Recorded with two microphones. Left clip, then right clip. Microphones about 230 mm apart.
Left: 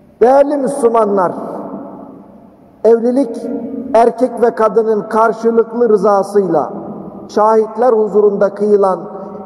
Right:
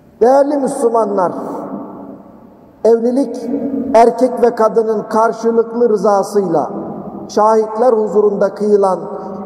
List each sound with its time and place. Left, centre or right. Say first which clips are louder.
0.2 s a man's voice: left 1 dB; left
2.8 s a man's voice: left 1 dB; left